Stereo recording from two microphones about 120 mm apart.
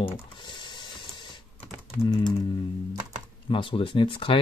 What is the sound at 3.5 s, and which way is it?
Speech, 45° left (ahead or behind).